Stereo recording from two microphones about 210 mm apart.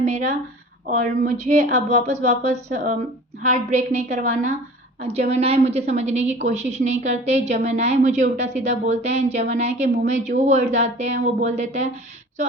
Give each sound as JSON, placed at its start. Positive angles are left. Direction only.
{"t": 0.0, "sound": "a woman's voice", "side_deg": -35}